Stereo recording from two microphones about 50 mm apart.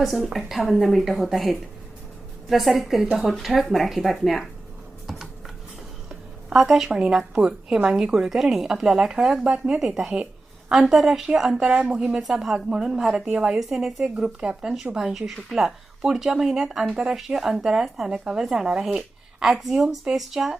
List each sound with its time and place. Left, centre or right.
0.0 s a woman's voice: centre
6.1 s a sound: centre
7.3 s a woman's voice: centre
11.7 s speech: right
12.2 s a woman's voice: centre
13.3 s a woman's voice: right; by 20.6 s centre